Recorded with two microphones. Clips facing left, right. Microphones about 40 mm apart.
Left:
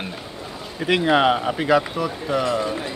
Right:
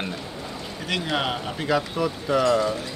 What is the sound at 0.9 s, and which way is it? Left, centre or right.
Speech, left.